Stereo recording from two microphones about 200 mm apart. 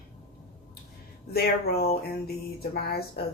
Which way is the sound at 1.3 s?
50° left (ahead or behind).